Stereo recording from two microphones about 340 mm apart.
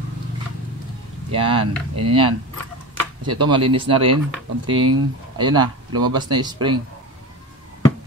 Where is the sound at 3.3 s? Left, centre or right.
Centre.